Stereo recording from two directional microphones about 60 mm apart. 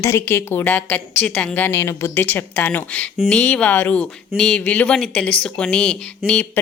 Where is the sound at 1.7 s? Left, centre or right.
Left.